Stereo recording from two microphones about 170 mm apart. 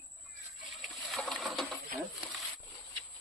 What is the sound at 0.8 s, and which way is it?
Boat, centre (ahead or behind).